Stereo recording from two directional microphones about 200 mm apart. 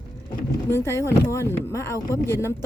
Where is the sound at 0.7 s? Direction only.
10° left (ahead or behind).